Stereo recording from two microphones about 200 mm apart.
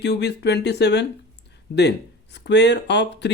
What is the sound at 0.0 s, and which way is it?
Speech, 60° left (ahead or behind).